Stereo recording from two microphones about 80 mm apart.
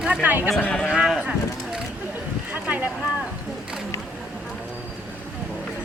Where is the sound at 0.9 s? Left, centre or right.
Centre.